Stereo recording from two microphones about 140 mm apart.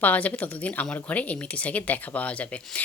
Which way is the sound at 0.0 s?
10° left (ahead or behind).